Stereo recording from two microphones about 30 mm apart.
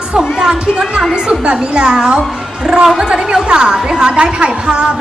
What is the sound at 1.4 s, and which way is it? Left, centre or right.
A woman's voice, right.